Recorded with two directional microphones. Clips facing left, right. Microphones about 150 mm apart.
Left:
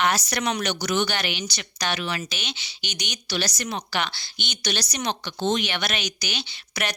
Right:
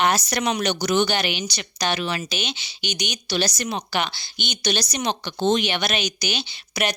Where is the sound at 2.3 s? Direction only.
15° right (ahead or behind).